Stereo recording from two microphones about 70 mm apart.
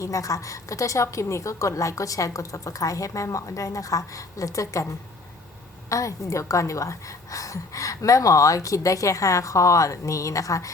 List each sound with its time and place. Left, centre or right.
0.0 s a woman's voice: left
5.9 s a woman's voice: left